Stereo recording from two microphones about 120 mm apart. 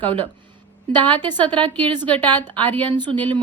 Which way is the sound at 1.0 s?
15° left (ahead or behind).